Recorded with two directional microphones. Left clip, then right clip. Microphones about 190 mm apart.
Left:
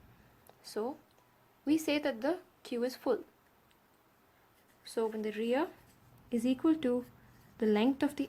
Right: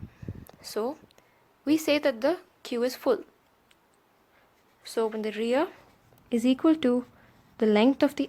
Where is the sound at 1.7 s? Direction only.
35° right (ahead or behind).